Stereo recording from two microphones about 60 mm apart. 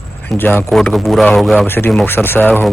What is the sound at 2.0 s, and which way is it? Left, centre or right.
Speech, left.